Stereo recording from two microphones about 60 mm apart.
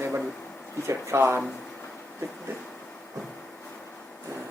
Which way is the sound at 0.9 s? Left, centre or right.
Right.